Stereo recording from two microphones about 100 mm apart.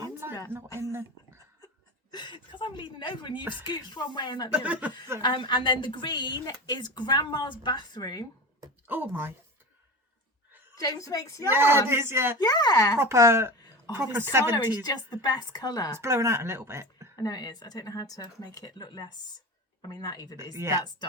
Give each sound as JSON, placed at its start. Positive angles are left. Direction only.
{"t": 0.0, "sound": "a sound", "side_deg": -25}
{"t": 0.8, "sound": "speech", "side_deg": -25}
{"t": 1.6, "sound": "speech", "side_deg": 45}
{"t": 4.5, "sound": "speech", "side_deg": -15}
{"t": 5.2, "sound": "speech", "side_deg": 50}
{"t": 8.9, "sound": "speech", "side_deg": -20}
{"t": 10.8, "sound": "speech", "side_deg": 35}
{"t": 11.4, "sound": "speech", "side_deg": -20}
{"t": 12.4, "sound": "speech", "side_deg": 40}
{"t": 13.0, "sound": "speech", "side_deg": -30}
{"t": 14.5, "sound": "speech", "side_deg": 40}
{"t": 16.0, "sound": "speech", "side_deg": -25}
{"t": 17.2, "sound": "speech", "side_deg": 40}
{"t": 20.6, "sound": "speech", "side_deg": -30}